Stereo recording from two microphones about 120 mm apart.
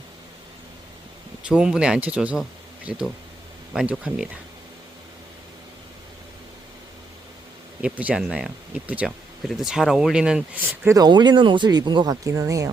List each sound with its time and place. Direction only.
1.5 s speech: 10° right (ahead or behind)
7.8 s speech: 10° right (ahead or behind)
10.9 s speech: 35° right (ahead or behind)